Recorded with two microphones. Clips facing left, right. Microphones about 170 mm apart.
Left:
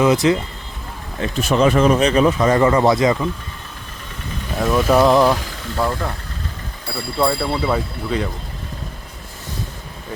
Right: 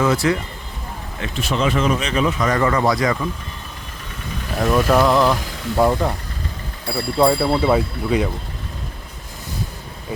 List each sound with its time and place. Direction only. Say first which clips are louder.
0.0 s speech: left 3 dB; 20° left (ahead or behind)
1.2 s speech: left 5 dB; 45° left (ahead or behind); by 3.2 s 20° left (ahead or behind)
4.5 s speech: even; centre (ahead or behind)
4.9 s speech: left 5 dB; 15° left (ahead or behind)
5.7 s speech: right 5 dB; 15° right (ahead or behind)
7.2 s speech: right 3 dB; 15° right (ahead or behind)